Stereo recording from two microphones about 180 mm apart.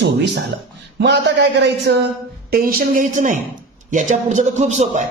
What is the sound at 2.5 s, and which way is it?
Speech, 50° right (ahead or behind).